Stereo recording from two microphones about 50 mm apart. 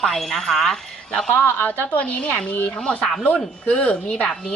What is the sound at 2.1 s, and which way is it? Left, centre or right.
A woman's voice, left.